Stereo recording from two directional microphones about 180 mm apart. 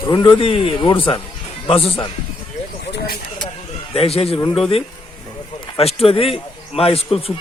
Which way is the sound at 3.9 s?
35° left (ahead or behind).